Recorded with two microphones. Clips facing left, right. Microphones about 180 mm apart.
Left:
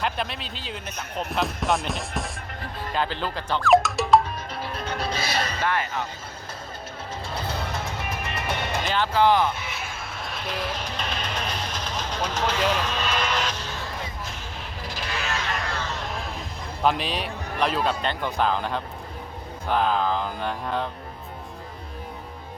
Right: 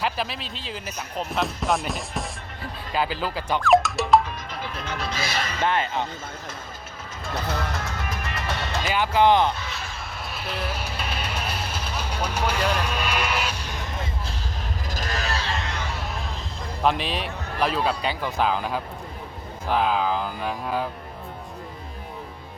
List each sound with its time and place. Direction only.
0.0 s speech: centre (ahead or behind)
4.9 s music: 30° left (ahead or behind)
5.6 s speech: 25° right (ahead or behind)
8.9 s speech: 15° right (ahead or behind)
10.2 s music: 5° right (ahead or behind)
14.8 s a sound: 45° right (ahead or behind)
16.8 s speech: centre (ahead or behind)